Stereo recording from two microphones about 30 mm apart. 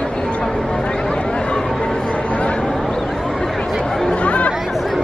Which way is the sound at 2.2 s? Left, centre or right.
Left.